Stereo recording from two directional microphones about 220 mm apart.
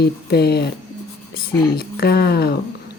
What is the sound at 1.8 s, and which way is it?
Speech, 45° left (ahead or behind).